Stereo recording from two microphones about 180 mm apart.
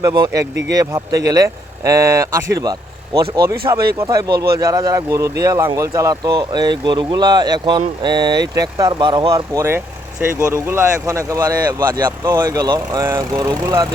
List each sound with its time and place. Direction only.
0.0 s speech: 20° right (ahead or behind)